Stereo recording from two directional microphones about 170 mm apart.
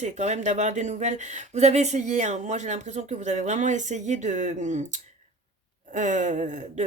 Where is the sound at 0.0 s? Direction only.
40° right (ahead or behind).